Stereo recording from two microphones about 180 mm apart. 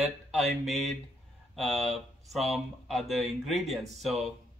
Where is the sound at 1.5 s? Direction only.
Centre (ahead or behind).